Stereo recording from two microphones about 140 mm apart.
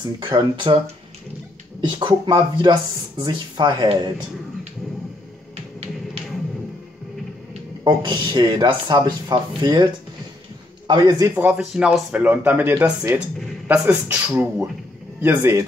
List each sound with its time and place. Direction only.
0.2 s speech: 35° right (ahead or behind)
1.8 s speech: 35° right (ahead or behind)
7.8 s a man's voice: 35° right (ahead or behind)
10.9 s a man's voice: 30° right (ahead or behind)
11.3 s speech: 10° right (ahead or behind)